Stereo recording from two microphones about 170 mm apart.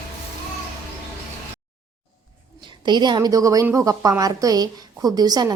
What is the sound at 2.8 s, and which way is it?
A woman's voice, 25° right (ahead or behind).